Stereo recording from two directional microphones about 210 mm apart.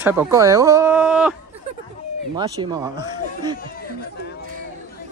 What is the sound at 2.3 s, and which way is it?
Speech, 20° right (ahead or behind).